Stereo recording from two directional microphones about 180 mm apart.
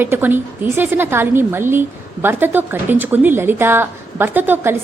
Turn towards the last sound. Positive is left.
turn(degrees=-10)  # may be behind; listen again after turning